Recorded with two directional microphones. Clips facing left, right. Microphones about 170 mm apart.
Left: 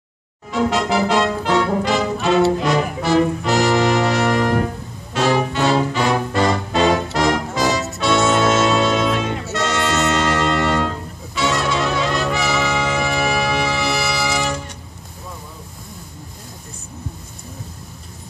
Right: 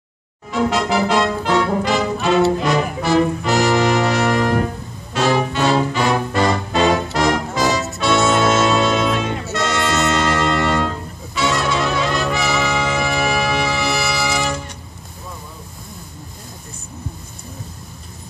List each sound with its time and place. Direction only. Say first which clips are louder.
0.5 s music: even; 30° left (ahead or behind)
11.3 s brass instrument: right 1 dB; 25° left (ahead or behind)
13.0 s music: even; 25° left (ahead or behind)